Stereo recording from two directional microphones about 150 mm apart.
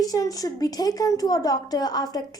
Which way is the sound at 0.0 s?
25° left (ahead or behind).